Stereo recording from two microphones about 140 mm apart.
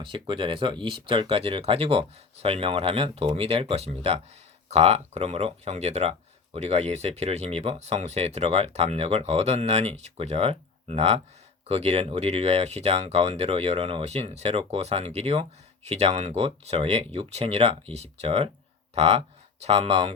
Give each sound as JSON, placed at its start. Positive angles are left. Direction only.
{"t": 0.0, "sound": "speech", "side_deg": -35}